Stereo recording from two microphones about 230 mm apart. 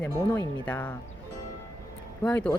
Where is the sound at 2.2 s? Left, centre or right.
Centre.